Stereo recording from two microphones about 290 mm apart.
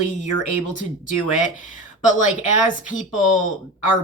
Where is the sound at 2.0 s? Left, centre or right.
Left.